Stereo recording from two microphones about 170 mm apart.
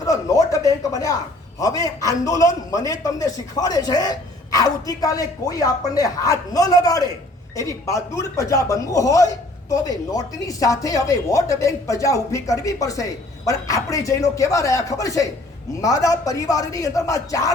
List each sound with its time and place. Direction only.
0.0 s speech: 20° left (ahead or behind)